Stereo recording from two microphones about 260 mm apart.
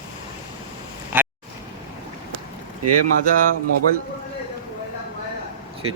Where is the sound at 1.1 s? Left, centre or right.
Centre.